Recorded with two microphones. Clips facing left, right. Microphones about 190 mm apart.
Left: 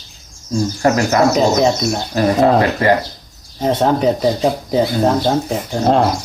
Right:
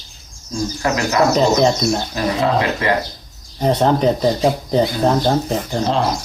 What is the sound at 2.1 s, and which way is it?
Speech, 45° left (ahead or behind).